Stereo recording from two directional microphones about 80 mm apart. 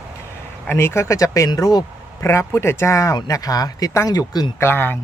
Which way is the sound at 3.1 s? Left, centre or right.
Left.